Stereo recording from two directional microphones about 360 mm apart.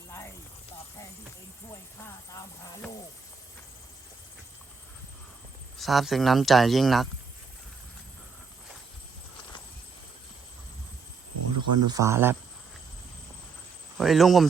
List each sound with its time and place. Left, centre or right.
5.7 s speech: centre
11.5 s a sound: right
11.9 s speech: centre
14.0 s speech: centre